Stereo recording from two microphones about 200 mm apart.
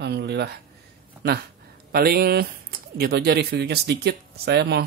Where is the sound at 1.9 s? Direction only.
50° right (ahead or behind).